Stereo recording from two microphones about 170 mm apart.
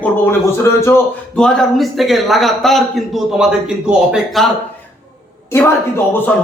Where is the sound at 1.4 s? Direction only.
5° left (ahead or behind).